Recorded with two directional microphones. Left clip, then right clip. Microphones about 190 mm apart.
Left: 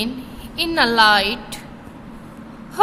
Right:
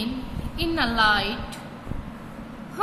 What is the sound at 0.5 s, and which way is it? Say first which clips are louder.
Speech: left 8 dB; 55° left (ahead or behind).